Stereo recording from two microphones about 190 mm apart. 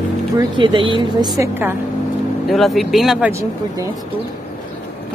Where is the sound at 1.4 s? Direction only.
10° right (ahead or behind).